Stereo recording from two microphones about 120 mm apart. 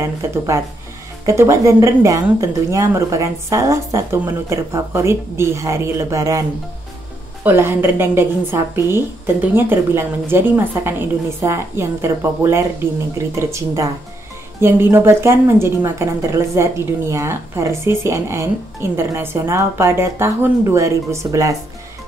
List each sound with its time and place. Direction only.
0.0 s a woman's voice: 25° right (ahead or behind)
7.4 s a woman's voice: 20° right (ahead or behind)